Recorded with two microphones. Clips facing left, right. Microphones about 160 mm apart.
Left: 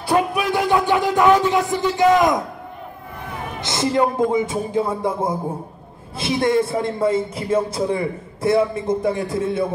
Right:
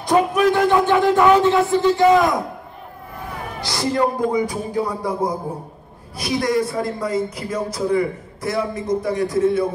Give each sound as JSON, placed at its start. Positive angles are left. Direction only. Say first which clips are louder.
{"t": 0.0, "sound": "music", "louder": "right 3 dB", "side_deg": 10}
{"t": 1.5, "sound": "a man's voice", "louder": "right 3 dB", "side_deg": 15}
{"t": 3.6, "sound": "a man's voice", "louder": "left 1 dB", "side_deg": 20}